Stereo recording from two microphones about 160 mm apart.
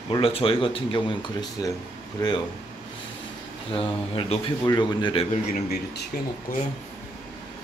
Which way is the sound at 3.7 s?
35° left (ahead or behind).